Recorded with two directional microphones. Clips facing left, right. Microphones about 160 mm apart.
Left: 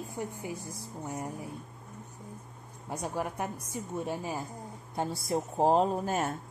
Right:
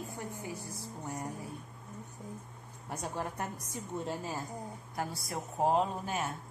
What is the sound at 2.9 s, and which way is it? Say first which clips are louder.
Speech: left 4 dB; 15° left (ahead or behind).